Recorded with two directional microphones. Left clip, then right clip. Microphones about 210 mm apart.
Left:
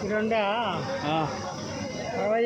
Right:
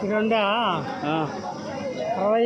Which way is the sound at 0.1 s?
35° right (ahead or behind).